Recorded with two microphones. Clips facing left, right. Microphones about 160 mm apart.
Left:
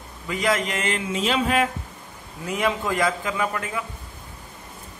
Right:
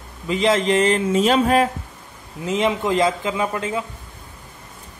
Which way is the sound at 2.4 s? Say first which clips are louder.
Right 4 dB; 20° right (ahead or behind).